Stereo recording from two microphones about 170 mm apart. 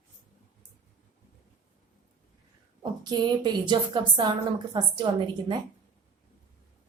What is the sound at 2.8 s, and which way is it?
A woman's voice, 25° right (ahead or behind).